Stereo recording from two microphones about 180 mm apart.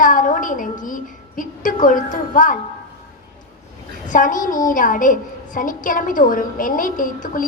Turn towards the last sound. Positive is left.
turn(degrees=45)  # may be behind; listen again after turning